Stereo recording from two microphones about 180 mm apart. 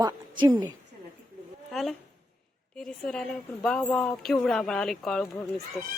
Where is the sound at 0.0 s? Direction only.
20° right (ahead or behind).